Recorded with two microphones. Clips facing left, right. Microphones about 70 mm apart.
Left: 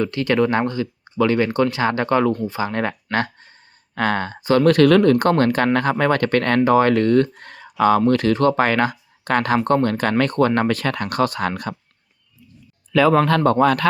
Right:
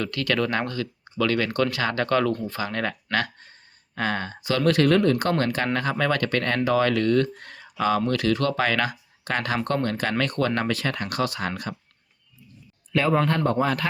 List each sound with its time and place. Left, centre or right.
0.0 s speech: left
3.9 s speech: left
4.8 s speech: left
13.1 s speech: left